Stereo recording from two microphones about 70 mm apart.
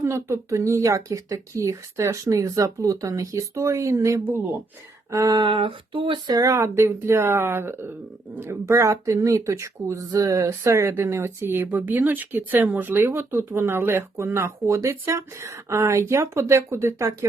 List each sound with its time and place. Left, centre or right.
0.0 s speech: right
6.2 s speech: right
6.6 s speech: right
10.6 s speech: right